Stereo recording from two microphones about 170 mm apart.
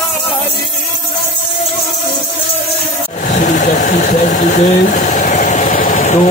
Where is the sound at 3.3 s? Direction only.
50° left (ahead or behind).